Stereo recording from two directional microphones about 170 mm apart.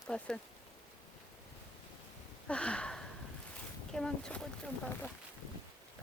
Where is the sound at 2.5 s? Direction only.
5° left (ahead or behind).